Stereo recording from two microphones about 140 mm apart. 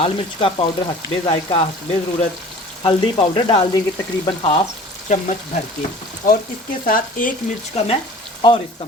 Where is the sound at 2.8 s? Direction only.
40° left (ahead or behind).